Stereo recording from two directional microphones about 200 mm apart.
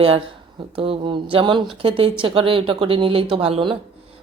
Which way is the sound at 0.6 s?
25° right (ahead or behind).